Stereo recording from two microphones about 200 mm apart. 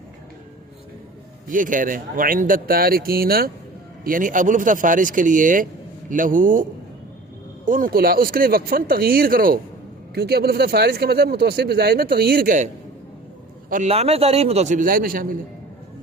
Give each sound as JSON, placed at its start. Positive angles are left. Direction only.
{"t": 1.5, "sound": "a man's voice", "side_deg": -40}
{"t": 13.7, "sound": "a man's voice", "side_deg": -35}